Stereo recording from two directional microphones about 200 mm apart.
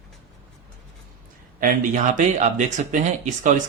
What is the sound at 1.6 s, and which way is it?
Speech, 40° right (ahead or behind).